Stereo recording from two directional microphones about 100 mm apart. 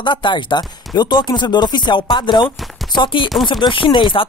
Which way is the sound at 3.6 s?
55° left (ahead or behind).